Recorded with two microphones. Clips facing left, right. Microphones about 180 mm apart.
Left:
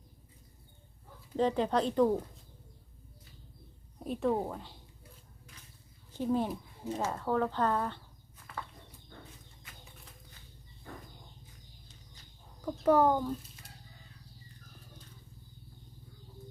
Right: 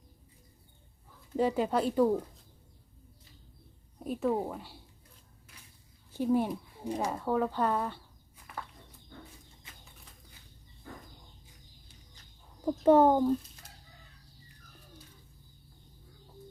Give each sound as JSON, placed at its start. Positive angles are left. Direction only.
{"t": 1.4, "sound": "speech", "side_deg": -10}
{"t": 4.0, "sound": "a woman's voice", "side_deg": 0}
{"t": 6.1, "sound": "speech", "side_deg": -10}
{"t": 12.6, "sound": "speech", "side_deg": -25}